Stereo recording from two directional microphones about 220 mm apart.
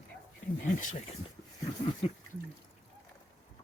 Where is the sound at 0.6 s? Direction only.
35° left (ahead or behind).